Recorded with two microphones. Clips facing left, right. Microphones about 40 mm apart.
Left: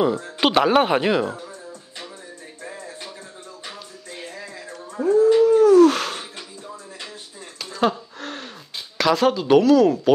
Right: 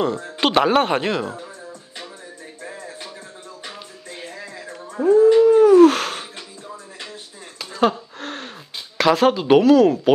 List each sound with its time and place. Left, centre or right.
0.0 s speech: centre
1.4 s music: centre
7.7 s gasp: centre
8.9 s speech: centre